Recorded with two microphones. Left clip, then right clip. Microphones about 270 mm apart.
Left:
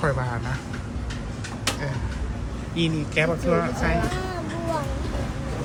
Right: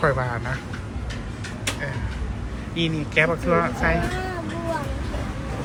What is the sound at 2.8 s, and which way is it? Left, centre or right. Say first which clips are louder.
Speech: right 3 dB; centre.